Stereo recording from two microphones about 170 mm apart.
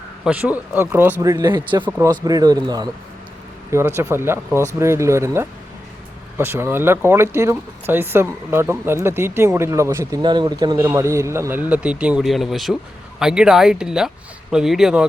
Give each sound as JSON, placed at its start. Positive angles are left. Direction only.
{"t": 0.3, "sound": "speech", "side_deg": -10}